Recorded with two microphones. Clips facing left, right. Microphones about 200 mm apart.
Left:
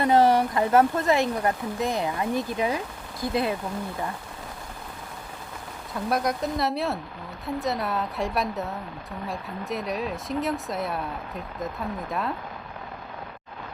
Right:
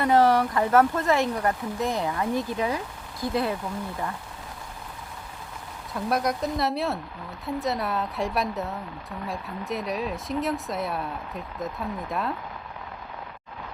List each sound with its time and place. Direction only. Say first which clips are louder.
0.0 s speech: left 1 dB; 20° left (ahead or behind)
5.9 s speech: even; centre (ahead or behind)